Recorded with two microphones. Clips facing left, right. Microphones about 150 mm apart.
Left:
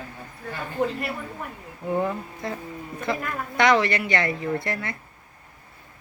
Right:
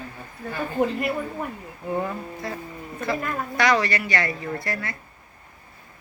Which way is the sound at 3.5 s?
20° left (ahead or behind).